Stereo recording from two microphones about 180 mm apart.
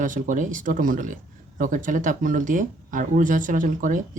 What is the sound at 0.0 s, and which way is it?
Speech, 45° right (ahead or behind).